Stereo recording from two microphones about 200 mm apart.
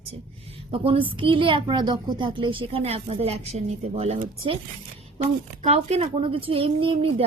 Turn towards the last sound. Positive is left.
turn(degrees=-30)  # may be behind; listen again after turning